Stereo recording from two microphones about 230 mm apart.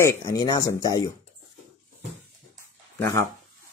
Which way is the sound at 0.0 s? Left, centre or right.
Centre.